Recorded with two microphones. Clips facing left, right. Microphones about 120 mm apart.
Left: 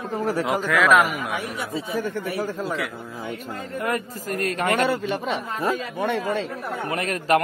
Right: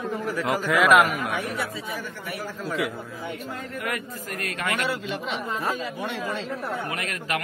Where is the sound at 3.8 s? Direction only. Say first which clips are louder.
Left 7 dB; 35° left (ahead or behind); by 6.4 s 55° left (ahead or behind).